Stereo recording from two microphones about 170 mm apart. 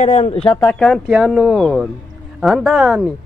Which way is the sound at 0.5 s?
15° left (ahead or behind).